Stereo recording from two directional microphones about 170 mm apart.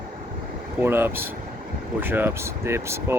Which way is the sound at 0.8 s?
15° right (ahead or behind).